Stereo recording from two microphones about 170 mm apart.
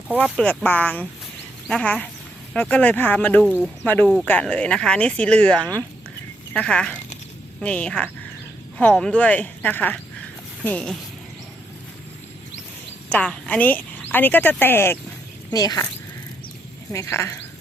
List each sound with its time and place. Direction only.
0.3 s speech: 5° left (ahead or behind)
13.1 s speech: 5° left (ahead or behind)
16.9 s speech: 15° left (ahead or behind)